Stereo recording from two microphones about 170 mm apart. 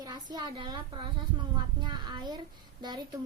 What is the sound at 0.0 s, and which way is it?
A woman's voice, 25° right (ahead or behind).